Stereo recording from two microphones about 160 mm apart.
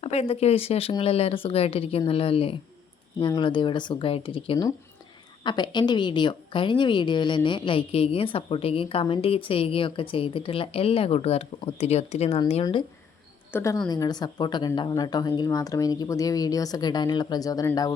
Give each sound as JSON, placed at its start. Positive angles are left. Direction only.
{"t": 0.0, "sound": "a woman's voice", "side_deg": 40}
{"t": 13.5, "sound": "speech", "side_deg": 20}